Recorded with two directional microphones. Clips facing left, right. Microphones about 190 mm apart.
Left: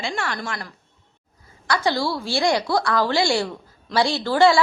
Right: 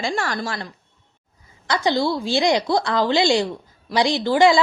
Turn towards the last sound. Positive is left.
turn(degrees=-15)  # may be behind; listen again after turning